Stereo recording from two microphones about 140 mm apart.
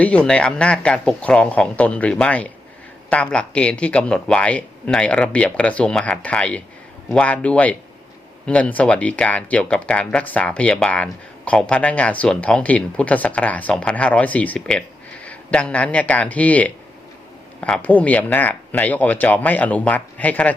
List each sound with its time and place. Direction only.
0.0 s speech: 10° left (ahead or behind)